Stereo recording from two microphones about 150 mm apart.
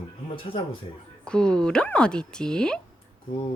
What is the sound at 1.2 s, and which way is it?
Speech, 5° left (ahead or behind).